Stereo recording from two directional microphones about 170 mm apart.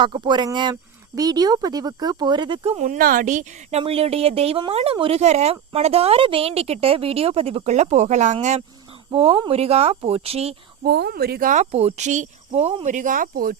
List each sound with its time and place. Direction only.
0.0 s speech: 25° right (ahead or behind)
2.7 s a woman's voice: 45° right (ahead or behind)
9.1 s a woman's voice: 35° right (ahead or behind)
10.8 s speech: 70° right (ahead or behind)